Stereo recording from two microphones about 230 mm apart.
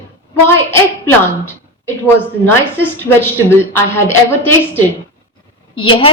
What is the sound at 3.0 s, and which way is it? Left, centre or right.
A woman's voice, centre.